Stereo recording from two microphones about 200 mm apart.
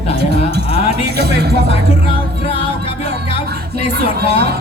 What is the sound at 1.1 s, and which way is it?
Music, 55° right (ahead or behind).